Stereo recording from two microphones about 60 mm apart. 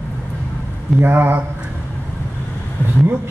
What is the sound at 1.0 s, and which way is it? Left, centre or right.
Speech, right.